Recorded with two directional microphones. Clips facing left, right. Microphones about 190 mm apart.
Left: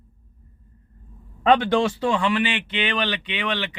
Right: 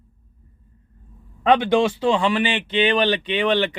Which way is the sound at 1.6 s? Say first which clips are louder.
Right 2 dB; 20° right (ahead or behind).